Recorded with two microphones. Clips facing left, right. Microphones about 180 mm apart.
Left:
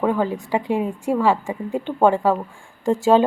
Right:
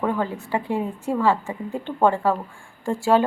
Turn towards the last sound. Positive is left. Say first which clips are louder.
# left 4 dB
turn(degrees=20)  # may be behind; listen again after turning